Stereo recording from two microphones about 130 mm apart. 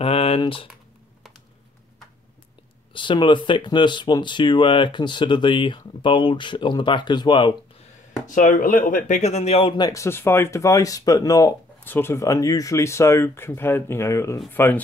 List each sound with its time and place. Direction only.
0.0 s typing: 50° left (ahead or behind)
0.4 s speech: 45° left (ahead or behind)
2.9 s speech: 40° left (ahead or behind)
8.3 s speech: 85° left; by 9.8 s 50° left (ahead or behind)
9.8 s speech: 25° left (ahead or behind)
11.8 s speech: 15° left (ahead or behind)